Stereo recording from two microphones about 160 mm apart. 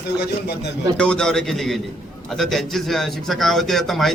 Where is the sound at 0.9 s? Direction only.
5° left (ahead or behind).